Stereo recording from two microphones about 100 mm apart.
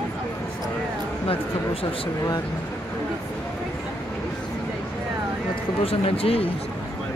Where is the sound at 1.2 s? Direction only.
70° left (ahead or behind).